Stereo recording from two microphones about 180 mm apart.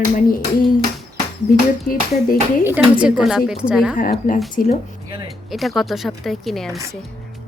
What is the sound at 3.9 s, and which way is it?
Speech, 50° left (ahead or behind).